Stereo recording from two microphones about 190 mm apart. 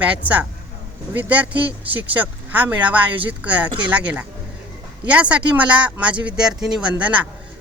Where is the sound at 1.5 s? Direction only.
30° right (ahead or behind).